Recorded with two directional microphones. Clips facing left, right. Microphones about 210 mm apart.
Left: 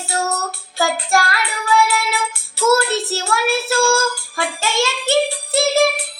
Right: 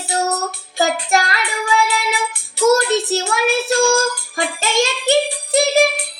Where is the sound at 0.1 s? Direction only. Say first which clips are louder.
Right 2 dB; 15° right (ahead or behind).